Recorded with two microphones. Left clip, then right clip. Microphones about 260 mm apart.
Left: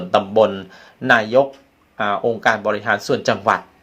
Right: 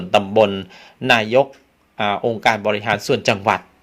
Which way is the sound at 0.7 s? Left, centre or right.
Right.